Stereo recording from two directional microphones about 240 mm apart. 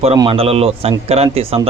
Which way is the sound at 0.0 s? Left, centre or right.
Right.